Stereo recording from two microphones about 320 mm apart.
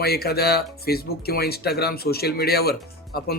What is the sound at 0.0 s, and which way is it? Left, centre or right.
Speech, left.